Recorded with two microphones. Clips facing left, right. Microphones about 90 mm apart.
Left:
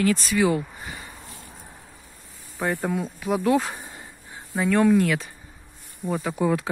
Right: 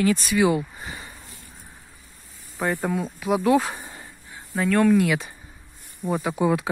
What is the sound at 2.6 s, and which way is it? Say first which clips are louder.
Insect: right 1 dB; 5° left (ahead or behind).